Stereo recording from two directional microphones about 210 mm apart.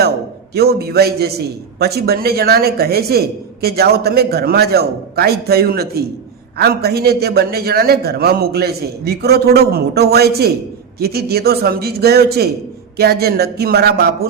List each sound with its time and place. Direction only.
0.5 s speech: 50° right (ahead or behind)